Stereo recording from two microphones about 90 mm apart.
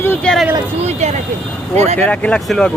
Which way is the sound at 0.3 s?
15° left (ahead or behind).